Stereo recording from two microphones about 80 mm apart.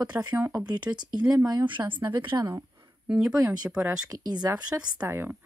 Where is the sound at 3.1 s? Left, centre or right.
Centre.